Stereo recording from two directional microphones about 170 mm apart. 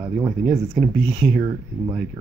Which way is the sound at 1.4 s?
25° right (ahead or behind).